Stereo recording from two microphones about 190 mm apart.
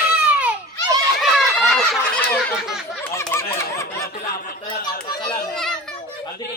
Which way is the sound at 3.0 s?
15° left (ahead or behind).